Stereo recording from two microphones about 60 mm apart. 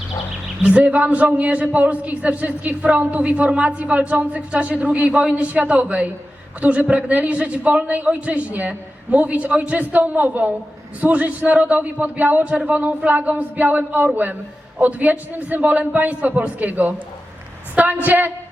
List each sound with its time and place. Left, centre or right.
0.6 s a man's voice: right
18.0 s speech: right